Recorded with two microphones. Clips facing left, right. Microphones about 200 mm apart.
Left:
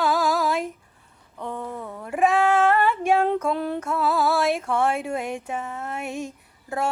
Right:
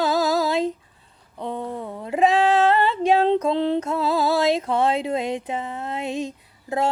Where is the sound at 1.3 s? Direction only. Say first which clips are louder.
Right 3 dB; 20° right (ahead or behind).